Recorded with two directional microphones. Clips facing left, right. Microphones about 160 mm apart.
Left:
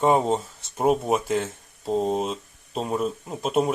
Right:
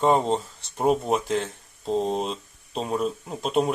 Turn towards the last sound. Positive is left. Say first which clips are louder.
# left 1 dB
turn(degrees=0)  # may be behind; listen again after turning